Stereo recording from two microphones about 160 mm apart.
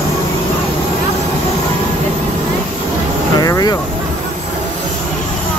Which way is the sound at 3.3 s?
20° left (ahead or behind).